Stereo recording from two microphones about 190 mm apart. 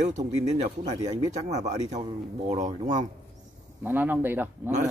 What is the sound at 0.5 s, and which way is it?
A man's voice, 40° right (ahead or behind).